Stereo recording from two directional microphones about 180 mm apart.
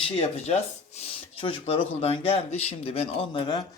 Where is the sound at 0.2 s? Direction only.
35° left (ahead or behind).